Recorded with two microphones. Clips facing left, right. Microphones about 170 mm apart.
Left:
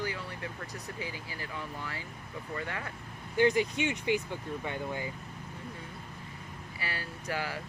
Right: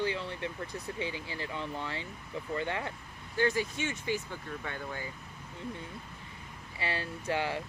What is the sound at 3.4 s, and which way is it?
Speech, 15° left (ahead or behind).